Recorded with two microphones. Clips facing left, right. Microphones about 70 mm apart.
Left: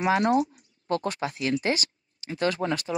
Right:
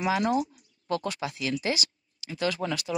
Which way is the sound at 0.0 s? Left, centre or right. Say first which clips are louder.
Left 3 dB; left.